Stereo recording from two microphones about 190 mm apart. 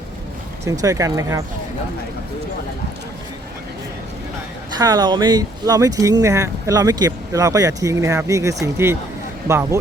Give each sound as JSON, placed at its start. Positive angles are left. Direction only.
{"t": 0.6, "sound": "speech", "side_deg": -15}
{"t": 4.8, "sound": "speech", "side_deg": -20}